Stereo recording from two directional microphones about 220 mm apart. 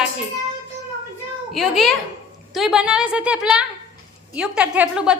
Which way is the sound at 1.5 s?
Centre (ahead or behind).